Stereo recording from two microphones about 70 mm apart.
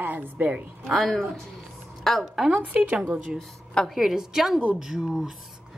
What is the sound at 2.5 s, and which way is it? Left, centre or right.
Speech, right.